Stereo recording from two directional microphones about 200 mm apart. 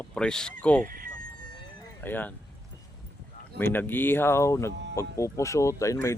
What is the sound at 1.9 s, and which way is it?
Speech, 10° left (ahead or behind).